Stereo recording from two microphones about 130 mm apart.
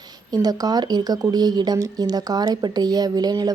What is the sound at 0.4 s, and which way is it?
Speech, 30° right (ahead or behind).